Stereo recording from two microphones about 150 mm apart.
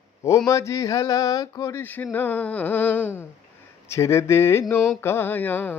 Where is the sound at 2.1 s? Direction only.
10° left (ahead or behind).